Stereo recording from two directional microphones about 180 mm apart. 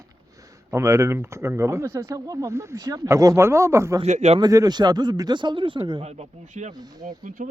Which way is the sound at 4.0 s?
40° right (ahead or behind).